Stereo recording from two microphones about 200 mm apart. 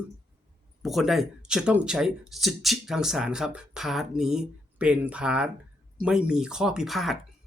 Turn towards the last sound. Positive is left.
turn(degrees=0)  # may be behind; listen again after turning